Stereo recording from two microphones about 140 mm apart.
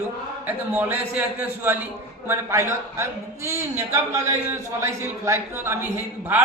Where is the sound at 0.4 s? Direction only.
10° right (ahead or behind).